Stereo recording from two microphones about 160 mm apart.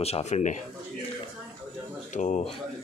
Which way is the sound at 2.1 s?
50° left (ahead or behind).